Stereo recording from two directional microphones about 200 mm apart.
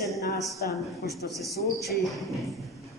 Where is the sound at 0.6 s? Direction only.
50° left (ahead or behind).